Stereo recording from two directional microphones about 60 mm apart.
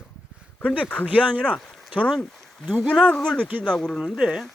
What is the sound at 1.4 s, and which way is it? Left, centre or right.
Speech, centre.